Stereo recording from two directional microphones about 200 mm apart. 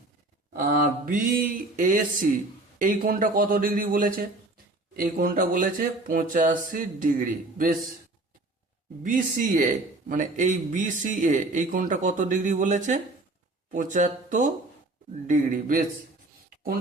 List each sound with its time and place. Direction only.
1.0 s speech: 45° right (ahead or behind)
9.0 s speech: 40° right (ahead or behind)